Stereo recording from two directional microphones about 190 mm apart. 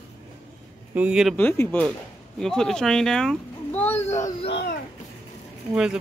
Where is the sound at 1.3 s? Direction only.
10° left (ahead or behind).